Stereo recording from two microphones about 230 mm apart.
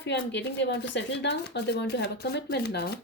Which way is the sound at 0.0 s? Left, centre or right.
Left.